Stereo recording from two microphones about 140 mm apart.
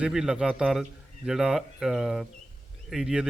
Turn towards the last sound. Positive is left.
turn(degrees=-5)  # may be behind; listen again after turning